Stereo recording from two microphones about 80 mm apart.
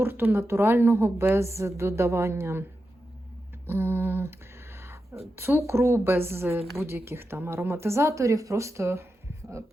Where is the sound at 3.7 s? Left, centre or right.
Right.